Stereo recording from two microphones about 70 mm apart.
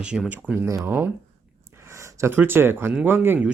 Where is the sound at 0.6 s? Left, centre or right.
Right.